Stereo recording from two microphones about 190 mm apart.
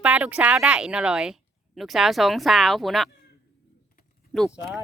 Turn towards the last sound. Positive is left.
turn(degrees=-5)  # may be behind; listen again after turning